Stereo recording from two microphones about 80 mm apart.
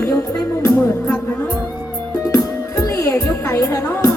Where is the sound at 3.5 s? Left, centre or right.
Left.